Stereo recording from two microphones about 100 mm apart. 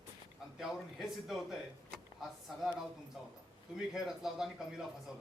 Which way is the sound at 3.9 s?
5° right (ahead or behind).